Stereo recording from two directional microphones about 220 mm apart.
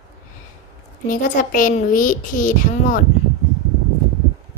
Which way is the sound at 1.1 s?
35° left (ahead or behind).